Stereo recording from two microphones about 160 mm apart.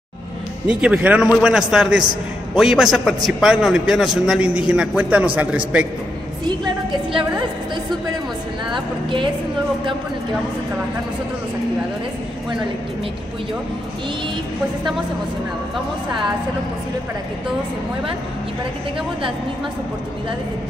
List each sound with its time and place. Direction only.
0.7 s a man's voice: 5° right (ahead or behind)
6.4 s a woman's voice: 25° right (ahead or behind)